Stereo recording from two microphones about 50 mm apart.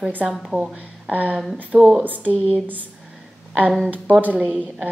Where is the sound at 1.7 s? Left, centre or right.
Right.